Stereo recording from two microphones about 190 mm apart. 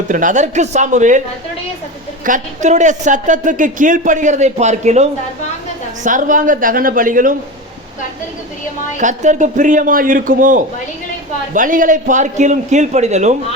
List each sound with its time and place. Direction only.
0.1 s speech: 45° right (ahead or behind)
2.2 s a man's voice: 40° right (ahead or behind)
9.0 s a man's voice: 40° right (ahead or behind)